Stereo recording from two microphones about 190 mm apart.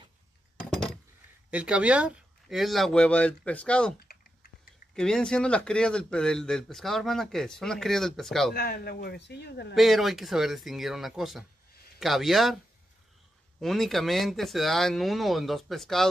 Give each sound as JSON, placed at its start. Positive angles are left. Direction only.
{"t": 1.5, "sound": "speech", "side_deg": -5}
{"t": 4.9, "sound": "speech", "side_deg": 5}
{"t": 8.5, "sound": "a man's voice", "side_deg": 55}
{"t": 9.8, "sound": "speech", "side_deg": 0}
{"t": 13.6, "sound": "speech", "side_deg": 0}